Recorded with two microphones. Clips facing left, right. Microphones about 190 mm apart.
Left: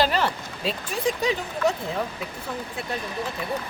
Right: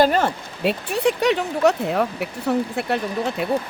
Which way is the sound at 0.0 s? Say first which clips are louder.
Right 5 dB; 50° right (ahead or behind).